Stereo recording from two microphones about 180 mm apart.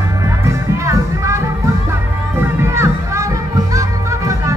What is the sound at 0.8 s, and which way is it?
Music, 15° right (ahead or behind).